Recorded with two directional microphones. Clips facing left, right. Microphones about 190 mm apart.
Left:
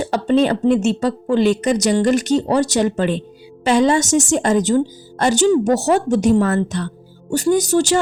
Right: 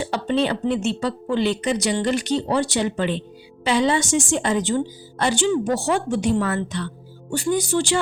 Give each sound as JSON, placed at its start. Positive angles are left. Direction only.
{"t": 0.0, "sound": "a woman's voice", "side_deg": 45}